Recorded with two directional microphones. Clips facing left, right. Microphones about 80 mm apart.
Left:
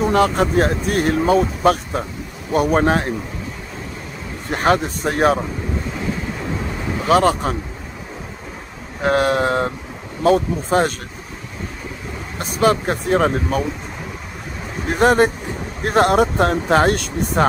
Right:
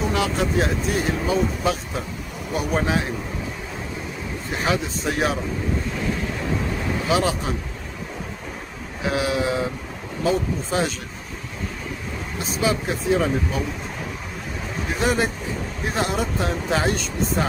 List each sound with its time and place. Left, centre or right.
0.0 s speech: left
4.5 s speech: left
7.1 s speech: left
9.0 s speech: left
12.4 s speech: left
14.9 s speech: left